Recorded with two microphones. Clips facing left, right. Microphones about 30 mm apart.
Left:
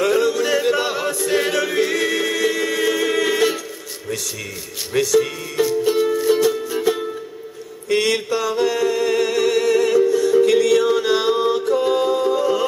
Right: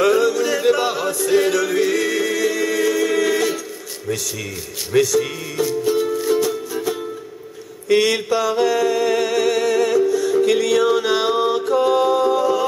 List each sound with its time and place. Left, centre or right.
0.0 s music: centre
4.9 s speech: centre
6.4 s music: centre
7.9 s mantra: centre